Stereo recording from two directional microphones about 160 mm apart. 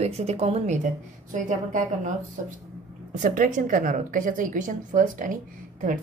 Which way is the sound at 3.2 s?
55° right (ahead or behind).